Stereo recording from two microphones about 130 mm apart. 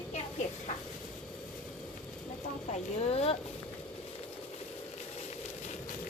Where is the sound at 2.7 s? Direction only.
50° left (ahead or behind).